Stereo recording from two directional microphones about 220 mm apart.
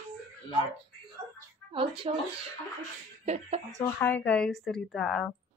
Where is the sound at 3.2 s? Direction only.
30° right (ahead or behind).